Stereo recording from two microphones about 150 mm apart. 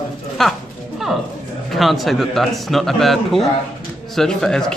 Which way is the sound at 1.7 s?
Centre (ahead or behind).